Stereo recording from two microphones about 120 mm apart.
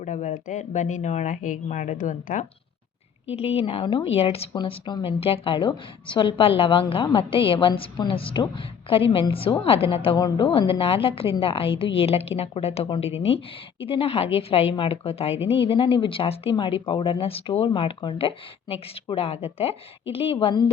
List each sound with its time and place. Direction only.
0.0 s speech: 90° left
3.3 s a woman's voice: 60° left (ahead or behind)
4.5 s a woman's voice: 45° left (ahead or behind)
10.2 s a woman's voice: 40° left (ahead or behind)